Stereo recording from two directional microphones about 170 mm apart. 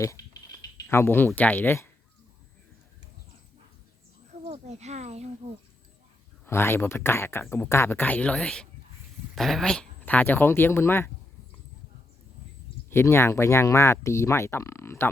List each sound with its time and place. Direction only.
0.2 s a sound: 20° left (ahead or behind)
0.9 s speech: 15° left (ahead or behind)
4.4 s speech: 40° right (ahead or behind)
6.4 s speech: 15° left (ahead or behind)
12.9 s speech: 15° left (ahead or behind)